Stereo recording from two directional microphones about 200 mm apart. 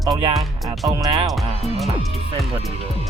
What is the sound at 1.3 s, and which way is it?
Speech, centre (ahead or behind).